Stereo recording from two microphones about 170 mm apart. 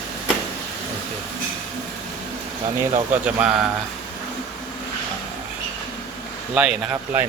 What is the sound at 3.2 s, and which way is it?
Speech, 5° right (ahead or behind).